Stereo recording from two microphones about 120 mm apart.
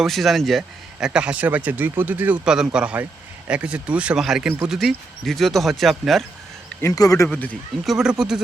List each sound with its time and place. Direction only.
0.0 s a man's voice: centre (ahead or behind)
6.8 s speech: 30° left (ahead or behind)
7.9 s speech: 5° right (ahead or behind)